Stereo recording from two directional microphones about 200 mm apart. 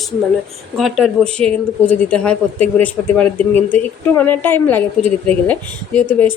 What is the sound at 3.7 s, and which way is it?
Speech, 10° left (ahead or behind).